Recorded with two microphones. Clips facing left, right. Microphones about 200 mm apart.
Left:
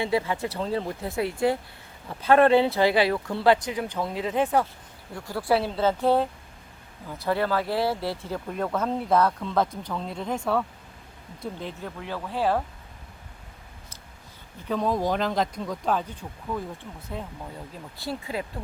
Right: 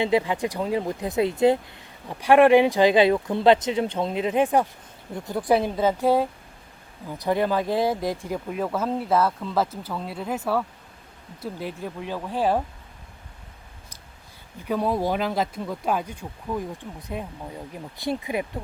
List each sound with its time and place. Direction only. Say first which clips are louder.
0.0 s speech: right 4 dB; 20° right (ahead or behind)
14.7 s speech: right 1 dB; 10° right (ahead or behind)